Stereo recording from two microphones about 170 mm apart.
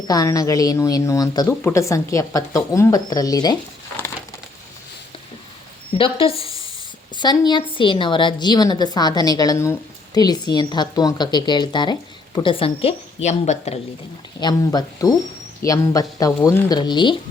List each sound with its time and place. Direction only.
0.1 s a woman's voice: 20° left (ahead or behind)
6.0 s a sound: 30° left (ahead or behind)
7.2 s a woman's voice: 25° left (ahead or behind); by 13.7 s 40° left (ahead or behind)
14.3 s a woman's voice: 20° left (ahead or behind)